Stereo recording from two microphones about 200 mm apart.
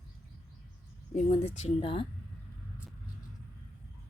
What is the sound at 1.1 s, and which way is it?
Speech, 35° left (ahead or behind).